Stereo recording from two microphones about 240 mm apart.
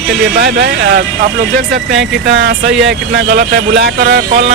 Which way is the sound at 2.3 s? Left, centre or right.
Right.